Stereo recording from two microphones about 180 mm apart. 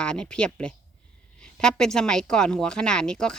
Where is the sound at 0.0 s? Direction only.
5° left (ahead or behind).